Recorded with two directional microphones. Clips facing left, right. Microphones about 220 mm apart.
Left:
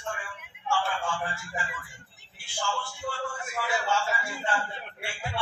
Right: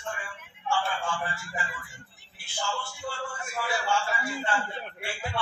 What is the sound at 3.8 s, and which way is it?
Speech, 20° left (ahead or behind).